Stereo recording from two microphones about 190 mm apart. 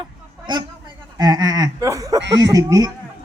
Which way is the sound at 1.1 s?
20° right (ahead or behind).